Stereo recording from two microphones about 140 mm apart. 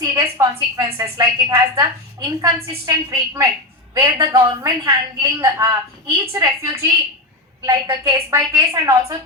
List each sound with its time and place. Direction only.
0.0 s a woman's voice: 25° right (ahead or behind)
7.9 s a woman's voice: 20° right (ahead or behind)